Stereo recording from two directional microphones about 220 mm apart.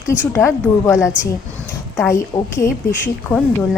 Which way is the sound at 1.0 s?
5° right (ahead or behind).